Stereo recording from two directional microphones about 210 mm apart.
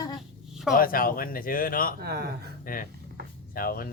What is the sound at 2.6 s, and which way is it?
Speech, 40° left (ahead or behind).